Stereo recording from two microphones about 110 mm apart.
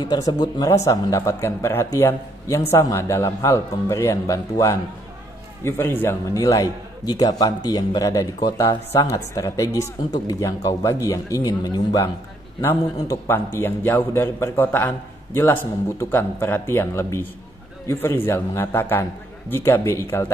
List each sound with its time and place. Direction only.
0.0 s a man's voice: 40° left (ahead or behind)
12.6 s speech: 20° left (ahead or behind)